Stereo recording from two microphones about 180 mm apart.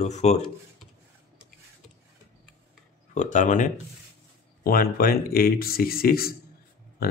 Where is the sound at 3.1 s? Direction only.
40° left (ahead or behind).